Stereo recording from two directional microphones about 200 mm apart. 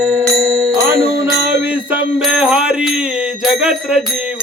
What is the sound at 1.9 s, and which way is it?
Music, 5° right (ahead or behind).